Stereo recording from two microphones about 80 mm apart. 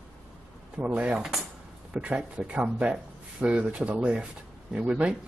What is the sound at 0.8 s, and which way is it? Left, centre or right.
Speech, centre.